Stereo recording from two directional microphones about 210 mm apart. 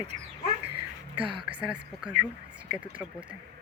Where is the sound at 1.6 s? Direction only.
5° right (ahead or behind).